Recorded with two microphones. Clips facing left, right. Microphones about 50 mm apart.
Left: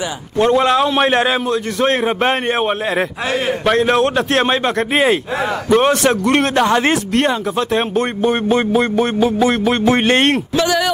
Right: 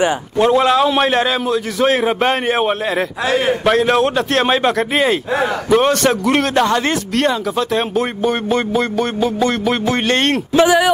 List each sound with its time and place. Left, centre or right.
0.4 s a man's voice: centre
1.0 s music: centre
1.5 s a man's voice: centre
3.3 s a man's voice: right
3.6 s a man's voice: centre
4.9 s music: centre
5.7 s a man's voice: centre
6.7 s music: centre
7.9 s music: centre
9.8 s music: centre
10.5 s speech: right